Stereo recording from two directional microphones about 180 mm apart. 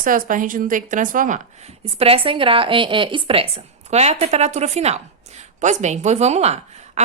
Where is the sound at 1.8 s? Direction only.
35° right (ahead or behind).